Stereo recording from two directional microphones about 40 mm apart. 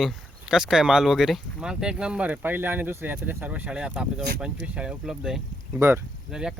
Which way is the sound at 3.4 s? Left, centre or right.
Right.